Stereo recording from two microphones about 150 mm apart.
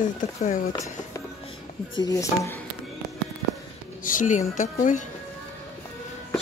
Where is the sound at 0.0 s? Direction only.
60° left (ahead or behind).